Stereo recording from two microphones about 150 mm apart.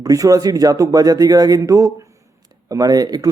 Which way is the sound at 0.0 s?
25° right (ahead or behind).